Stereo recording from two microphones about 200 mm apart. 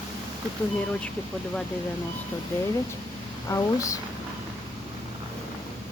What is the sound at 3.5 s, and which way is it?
Speech, 15° left (ahead or behind).